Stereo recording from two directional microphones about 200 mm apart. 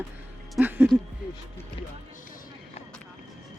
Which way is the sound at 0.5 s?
10° right (ahead or behind).